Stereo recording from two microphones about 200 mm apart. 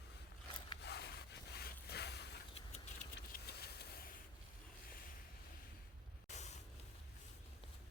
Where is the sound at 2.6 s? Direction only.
35° left (ahead or behind).